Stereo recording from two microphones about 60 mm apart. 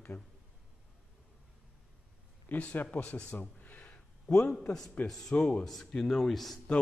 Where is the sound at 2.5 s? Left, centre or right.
Left.